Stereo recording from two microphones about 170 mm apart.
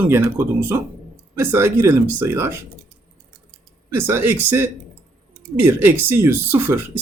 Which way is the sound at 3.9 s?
15° right (ahead or behind).